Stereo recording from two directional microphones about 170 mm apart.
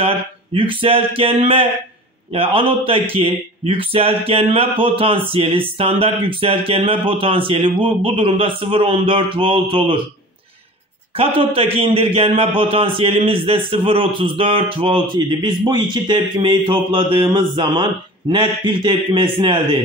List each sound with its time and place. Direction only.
0.6 s a man's voice: 30° right (ahead or behind)
11.1 s a man's voice: 35° right (ahead or behind)